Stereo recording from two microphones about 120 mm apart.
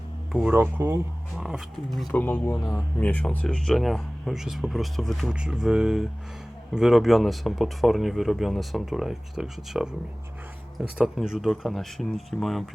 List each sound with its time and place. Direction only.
0.5 s speech: 20° right (ahead or behind)
1.4 s speech: centre (ahead or behind)
2.1 s speech: 15° left (ahead or behind)
2.6 s speech: 30° left (ahead or behind)
3.0 s speech: 10° left (ahead or behind); by 9.9 s 5° right (ahead or behind)
10.9 s speech: 5° right (ahead or behind)